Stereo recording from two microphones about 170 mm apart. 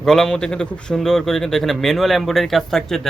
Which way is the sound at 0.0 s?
5° left (ahead or behind).